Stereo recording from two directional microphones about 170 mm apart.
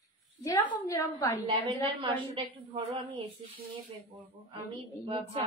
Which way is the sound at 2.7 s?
30° right (ahead or behind).